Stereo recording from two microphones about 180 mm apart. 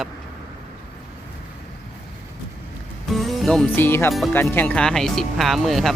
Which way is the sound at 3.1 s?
Centre (ahead or behind).